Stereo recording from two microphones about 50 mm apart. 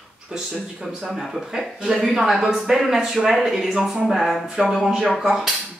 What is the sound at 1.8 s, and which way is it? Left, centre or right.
Speech, centre.